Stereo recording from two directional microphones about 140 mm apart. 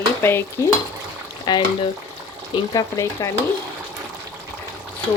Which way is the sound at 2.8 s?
25° left (ahead or behind).